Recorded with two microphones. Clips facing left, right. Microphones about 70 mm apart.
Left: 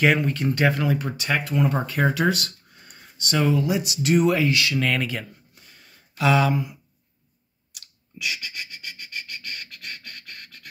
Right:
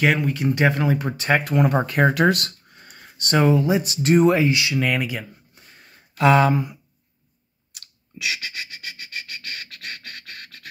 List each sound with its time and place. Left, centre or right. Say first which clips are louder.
0.0 s speech: even; centre
0.4 s speech: right 2 dB; centre
1.1 s speech: right 5 dB; right
1.5 s speech: right 4 dB; right
3.2 s speech: right 4 dB; right; by 5.2 s centre
5.5 s a sound: right 3 dB; right
7.8 s a sound: right 2 dB; right